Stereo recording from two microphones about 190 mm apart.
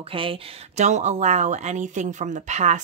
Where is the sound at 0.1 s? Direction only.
30° right (ahead or behind).